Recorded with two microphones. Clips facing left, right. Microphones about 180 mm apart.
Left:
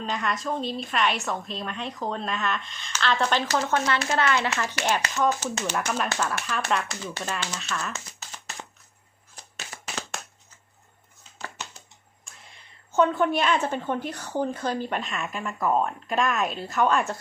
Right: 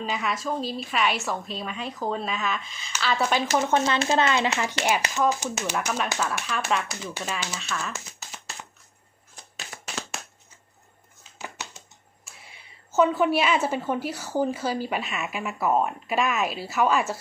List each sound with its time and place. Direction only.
0.0 s a woman's voice: 5° right (ahead or behind)
3.5 s speech: 20° right (ahead or behind)
5.1 s a woman's voice: 5° right (ahead or behind)
12.2 s a woman's voice: 5° right (ahead or behind)